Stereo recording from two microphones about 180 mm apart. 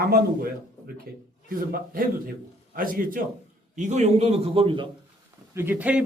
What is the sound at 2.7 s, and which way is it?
A man's voice, 50° right (ahead or behind).